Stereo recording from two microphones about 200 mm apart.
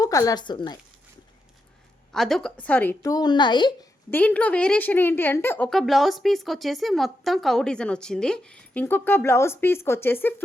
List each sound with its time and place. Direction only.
0.0 s a woman's voice: 15° left (ahead or behind)
2.1 s a woman's voice: centre (ahead or behind); by 3.8 s 20° left (ahead or behind)
4.1 s a woman's voice: 10° left (ahead or behind)